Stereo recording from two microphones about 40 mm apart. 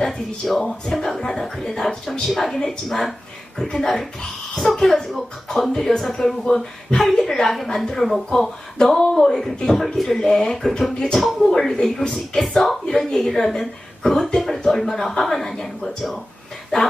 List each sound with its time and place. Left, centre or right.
0.0 s speech: centre
2.5 s a woman's voice: centre
2.9 s speech: centre
5.7 s speech: centre
11.1 s speech: centre